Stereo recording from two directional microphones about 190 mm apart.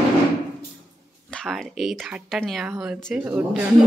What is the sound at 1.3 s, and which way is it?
Speech, centre (ahead or behind).